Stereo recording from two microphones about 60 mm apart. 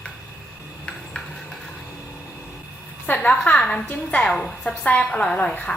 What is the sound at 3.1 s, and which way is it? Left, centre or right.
A woman's voice, left.